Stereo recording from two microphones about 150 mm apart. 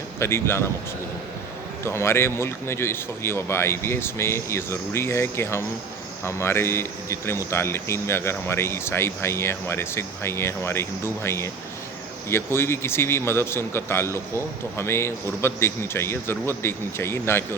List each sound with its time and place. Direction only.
0.2 s a man's voice: 15° left (ahead or behind)
1.8 s a man's voice: 15° left (ahead or behind)